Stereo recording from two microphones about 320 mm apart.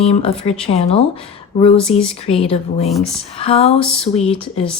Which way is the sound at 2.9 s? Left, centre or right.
Centre.